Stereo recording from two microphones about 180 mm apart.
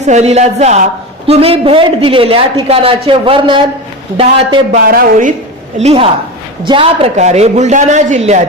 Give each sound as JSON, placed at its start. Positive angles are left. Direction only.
{"t": 0.0, "sound": "a man's voice", "side_deg": -40}
{"t": 4.9, "sound": "a woman's voice", "side_deg": -50}
{"t": 5.8, "sound": "a man's voice", "side_deg": -30}